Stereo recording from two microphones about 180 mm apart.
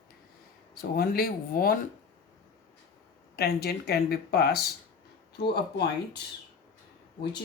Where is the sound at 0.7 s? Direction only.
55° left (ahead or behind).